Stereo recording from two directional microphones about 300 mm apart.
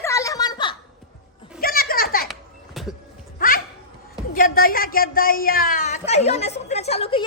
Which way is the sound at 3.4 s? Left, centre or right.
Left.